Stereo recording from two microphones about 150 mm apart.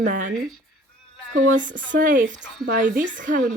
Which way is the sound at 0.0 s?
60° right (ahead or behind).